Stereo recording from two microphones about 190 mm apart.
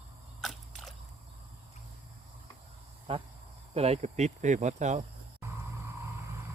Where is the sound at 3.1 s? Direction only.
30° right (ahead or behind).